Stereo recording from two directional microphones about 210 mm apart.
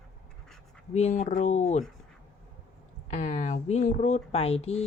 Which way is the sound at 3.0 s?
35° left (ahead or behind).